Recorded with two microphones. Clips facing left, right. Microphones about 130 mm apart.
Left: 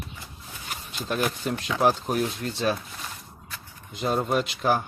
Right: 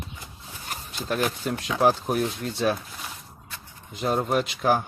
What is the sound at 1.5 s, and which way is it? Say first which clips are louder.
Speech: right 2 dB; 10° right (ahead or behind).